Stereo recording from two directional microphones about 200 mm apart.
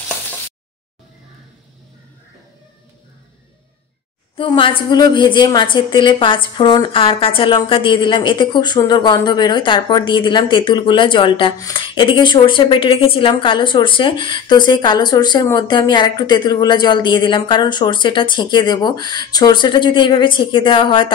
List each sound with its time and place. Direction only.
4.4 s a woman's voice: 25° left (ahead or behind)